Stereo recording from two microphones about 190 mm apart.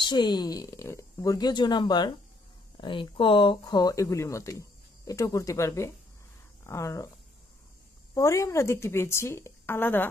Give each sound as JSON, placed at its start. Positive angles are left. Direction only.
{"t": 0.0, "sound": "speech", "side_deg": 25}
{"t": 8.1, "sound": "speech", "side_deg": 15}